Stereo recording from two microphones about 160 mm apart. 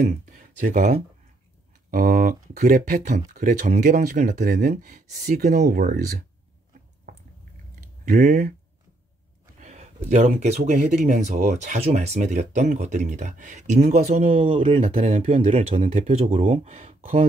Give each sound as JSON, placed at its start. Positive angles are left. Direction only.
{"t": 0.6, "sound": "speech", "side_deg": -50}
{"t": 5.7, "sound": "speech", "side_deg": -70}
{"t": 7.8, "sound": "speech", "side_deg": -60}
{"t": 9.6, "sound": "speech", "side_deg": -45}
{"t": 15.7, "sound": "speech", "side_deg": -50}